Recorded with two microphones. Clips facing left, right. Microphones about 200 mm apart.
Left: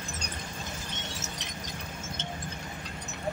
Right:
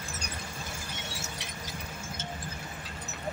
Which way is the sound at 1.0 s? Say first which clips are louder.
Left 1 dB; 10° right (ahead or behind).